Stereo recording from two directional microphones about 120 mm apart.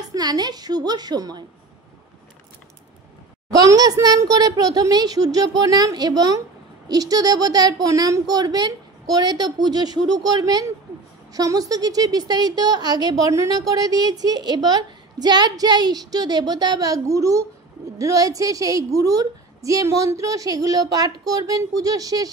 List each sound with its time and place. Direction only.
0.1 s a woman's voice: 35° right (ahead or behind)
3.5 s a woman's voice: 30° right (ahead or behind)